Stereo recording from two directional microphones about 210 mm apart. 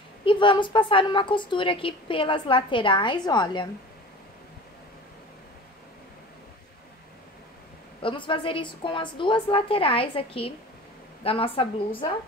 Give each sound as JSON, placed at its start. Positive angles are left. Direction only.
{"t": 0.2, "sound": "a woman's voice", "side_deg": 25}
{"t": 8.0, "sound": "a woman's voice", "side_deg": 25}